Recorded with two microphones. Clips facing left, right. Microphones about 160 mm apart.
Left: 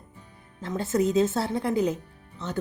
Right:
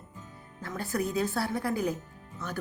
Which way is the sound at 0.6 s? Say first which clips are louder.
Left 7 dB; 25° left (ahead or behind).